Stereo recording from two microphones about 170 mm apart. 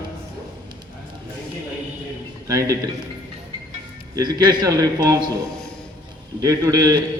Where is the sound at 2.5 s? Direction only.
20° right (ahead or behind).